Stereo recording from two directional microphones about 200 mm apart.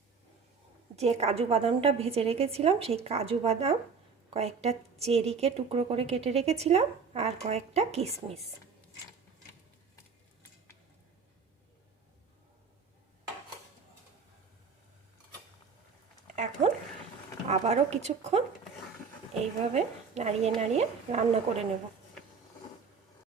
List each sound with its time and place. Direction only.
0.9 s a woman's voice: 30° right (ahead or behind)
16.2 s a sound: 35° right (ahead or behind)
17.5 s a woman's voice: 30° right (ahead or behind)